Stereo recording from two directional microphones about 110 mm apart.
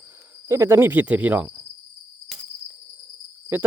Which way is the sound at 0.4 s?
25° right (ahead or behind).